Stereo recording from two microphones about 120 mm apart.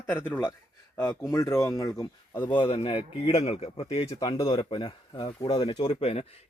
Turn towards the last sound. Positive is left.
turn(degrees=55)  # may be behind; listen again after turning